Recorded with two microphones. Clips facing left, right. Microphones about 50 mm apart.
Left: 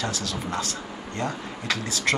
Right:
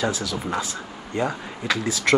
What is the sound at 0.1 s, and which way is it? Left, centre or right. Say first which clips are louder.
Speech: right 3 dB; left.